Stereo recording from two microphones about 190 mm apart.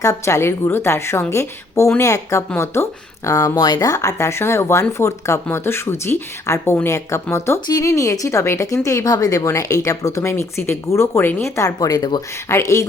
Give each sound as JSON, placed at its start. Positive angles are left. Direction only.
{"t": 0.0, "sound": "speech", "side_deg": 15}